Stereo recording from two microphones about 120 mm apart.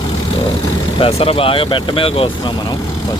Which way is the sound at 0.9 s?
50° left (ahead or behind).